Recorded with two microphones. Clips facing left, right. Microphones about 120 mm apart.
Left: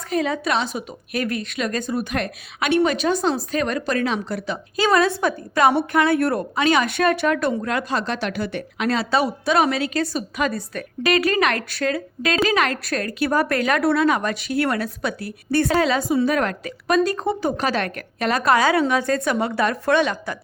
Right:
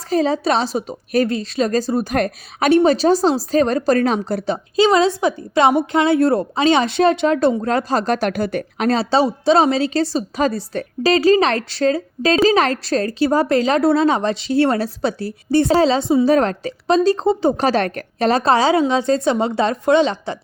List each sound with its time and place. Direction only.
0.1 s a woman's voice: 30° right (ahead or behind)
4.8 s a woman's voice: 20° right (ahead or behind)